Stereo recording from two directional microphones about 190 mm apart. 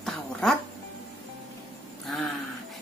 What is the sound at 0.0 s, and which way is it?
Music, centre (ahead or behind).